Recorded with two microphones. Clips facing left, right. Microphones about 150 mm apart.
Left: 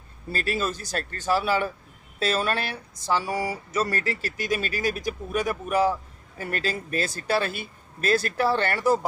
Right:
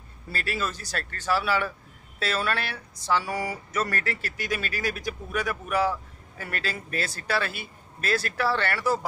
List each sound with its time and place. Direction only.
0.3 s speech: 40° left (ahead or behind)
6.6 s speech: 40° left (ahead or behind)
8.4 s speech: 20° left (ahead or behind)